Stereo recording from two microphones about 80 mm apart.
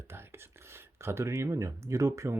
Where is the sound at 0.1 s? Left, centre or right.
Right.